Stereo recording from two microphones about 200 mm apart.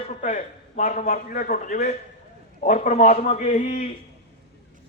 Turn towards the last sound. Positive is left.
turn(degrees=35)  # may be behind; listen again after turning